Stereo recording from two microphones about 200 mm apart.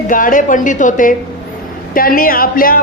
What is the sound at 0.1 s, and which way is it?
A woman's voice, 40° left (ahead or behind).